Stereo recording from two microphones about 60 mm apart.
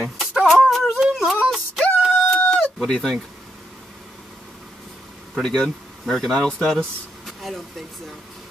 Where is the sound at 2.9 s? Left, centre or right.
Centre.